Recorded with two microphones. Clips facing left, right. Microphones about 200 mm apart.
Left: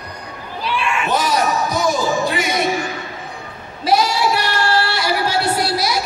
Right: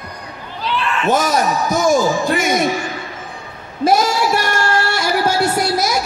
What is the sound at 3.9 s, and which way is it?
Female singing, 45° right (ahead or behind).